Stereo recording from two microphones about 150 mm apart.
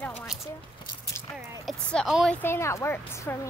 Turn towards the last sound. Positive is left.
turn(degrees=15)  # may be behind; listen again after turning